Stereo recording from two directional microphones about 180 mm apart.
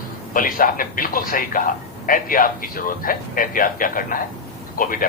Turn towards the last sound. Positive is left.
turn(degrees=50)  # may be behind; listen again after turning